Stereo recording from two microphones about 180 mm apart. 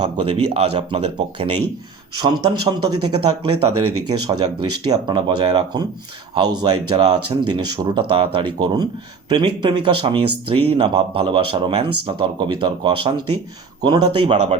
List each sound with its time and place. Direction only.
0.0 s speech: 30° right (ahead or behind)
2.2 s speech: 25° right (ahead or behind)
4.9 s speech: 25° right (ahead or behind)